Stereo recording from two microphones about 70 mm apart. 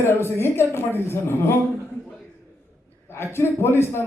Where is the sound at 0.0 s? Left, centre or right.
Left.